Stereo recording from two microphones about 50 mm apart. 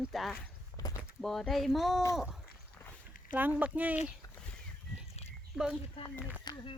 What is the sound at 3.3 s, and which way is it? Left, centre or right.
Speech, right.